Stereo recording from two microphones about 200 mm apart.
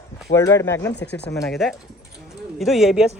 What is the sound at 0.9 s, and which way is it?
Speech, 60° left (ahead or behind).